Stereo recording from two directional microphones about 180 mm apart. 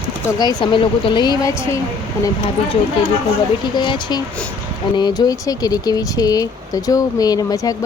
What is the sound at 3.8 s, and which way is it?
Speech, 25° left (ahead or behind).